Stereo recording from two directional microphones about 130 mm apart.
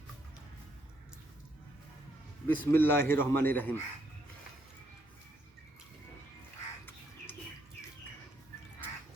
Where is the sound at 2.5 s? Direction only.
15° left (ahead or behind).